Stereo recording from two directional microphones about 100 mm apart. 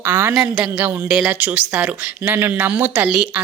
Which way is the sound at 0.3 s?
5° right (ahead or behind).